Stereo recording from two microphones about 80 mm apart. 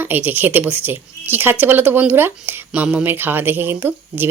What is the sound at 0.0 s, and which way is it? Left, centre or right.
Speech, right.